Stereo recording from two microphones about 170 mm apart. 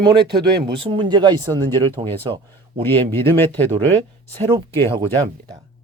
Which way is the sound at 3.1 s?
15° left (ahead or behind).